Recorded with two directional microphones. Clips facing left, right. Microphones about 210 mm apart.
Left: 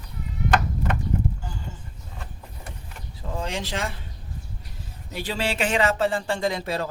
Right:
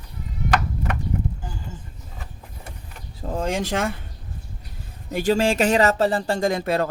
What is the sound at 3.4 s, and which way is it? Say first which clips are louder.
Speech: right 6 dB; 50° right (ahead or behind).